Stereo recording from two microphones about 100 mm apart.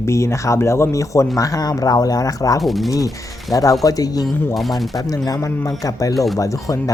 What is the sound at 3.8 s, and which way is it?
Speech, 35° left (ahead or behind).